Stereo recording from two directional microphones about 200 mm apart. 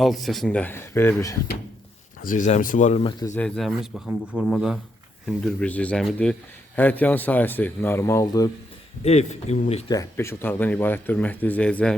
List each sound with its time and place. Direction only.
0.0 s speech: centre (ahead or behind)
2.2 s speech: 40° left (ahead or behind)
3.0 s speech: 25° left (ahead or behind)
3.3 s speech: 5° left (ahead or behind)
9.0 s speech: 35° left (ahead or behind)
9.9 s speech: 15° left (ahead or behind)